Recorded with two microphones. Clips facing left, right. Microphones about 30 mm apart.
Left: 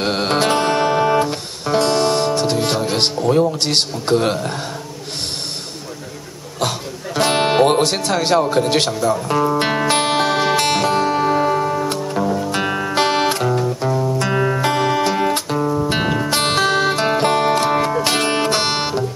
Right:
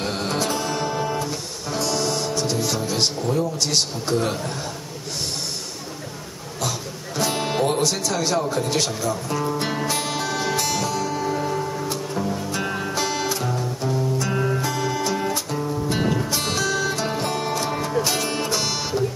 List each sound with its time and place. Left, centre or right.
0.0 s music: left
7.2 s music: left
15.6 s music: left